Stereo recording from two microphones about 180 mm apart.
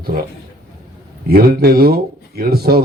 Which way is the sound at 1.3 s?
60° right (ahead or behind).